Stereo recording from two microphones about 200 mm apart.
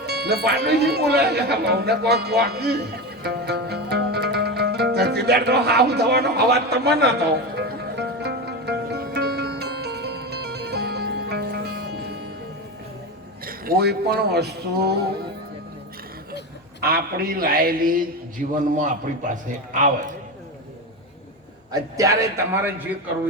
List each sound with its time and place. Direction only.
0.0 s speech: 55° right (ahead or behind)
7.6 s music: 55° right (ahead or behind)
13.4 s speech: 45° right (ahead or behind)
16.8 s a man's voice: 50° right (ahead or behind)
21.7 s a man's voice: 15° right (ahead or behind)